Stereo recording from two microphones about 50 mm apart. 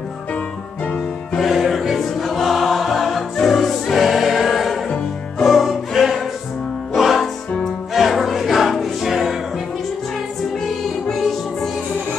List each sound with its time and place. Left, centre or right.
1.3 s music: centre
10.6 s music: centre